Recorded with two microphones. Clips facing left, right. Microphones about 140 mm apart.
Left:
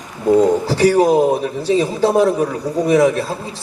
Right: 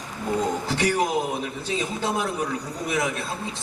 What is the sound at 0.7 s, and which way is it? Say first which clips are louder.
A man's voice: left 11 dB; 35° left (ahead or behind).